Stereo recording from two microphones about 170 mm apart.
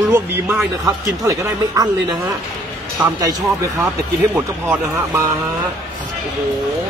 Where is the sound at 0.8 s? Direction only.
20° right (ahead or behind).